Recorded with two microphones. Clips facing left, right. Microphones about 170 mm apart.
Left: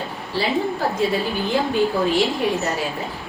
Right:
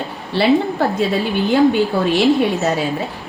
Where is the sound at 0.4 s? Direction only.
70° right (ahead or behind).